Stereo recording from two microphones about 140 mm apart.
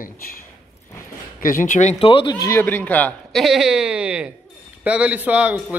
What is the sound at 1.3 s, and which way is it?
Speech, 75° left (ahead or behind).